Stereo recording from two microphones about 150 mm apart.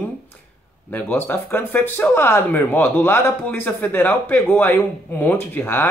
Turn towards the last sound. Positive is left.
turn(degrees=10)  # may be behind; listen again after turning